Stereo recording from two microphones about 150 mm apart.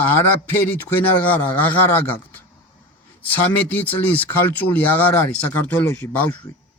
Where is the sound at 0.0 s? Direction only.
15° left (ahead or behind).